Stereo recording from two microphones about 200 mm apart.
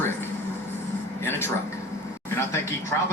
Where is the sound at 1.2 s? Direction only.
10° left (ahead or behind).